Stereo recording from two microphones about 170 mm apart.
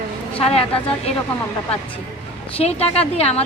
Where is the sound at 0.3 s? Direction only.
35° left (ahead or behind).